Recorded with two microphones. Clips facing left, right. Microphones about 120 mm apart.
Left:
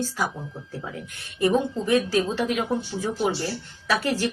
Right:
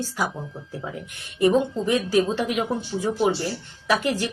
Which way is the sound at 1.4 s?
20° right (ahead or behind).